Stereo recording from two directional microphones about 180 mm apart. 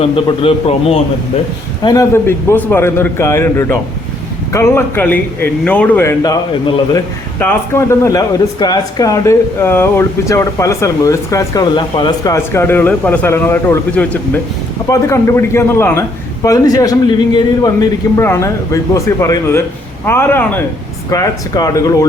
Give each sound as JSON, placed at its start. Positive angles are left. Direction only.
{"t": 0.0, "sound": "a man's voice", "side_deg": 30}
{"t": 1.8, "sound": "speech", "side_deg": 20}
{"t": 7.3, "sound": "speech", "side_deg": 10}